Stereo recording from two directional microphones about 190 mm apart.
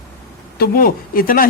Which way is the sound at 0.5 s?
50° left (ahead or behind).